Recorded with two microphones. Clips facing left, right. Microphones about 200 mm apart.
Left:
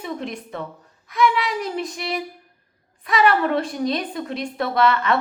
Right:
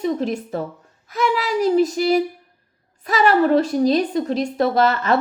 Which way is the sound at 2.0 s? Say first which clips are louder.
Right 10 dB; 35° right (ahead or behind).